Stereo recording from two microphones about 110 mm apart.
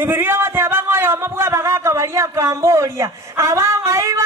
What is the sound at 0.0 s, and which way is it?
Speech, 20° right (ahead or behind).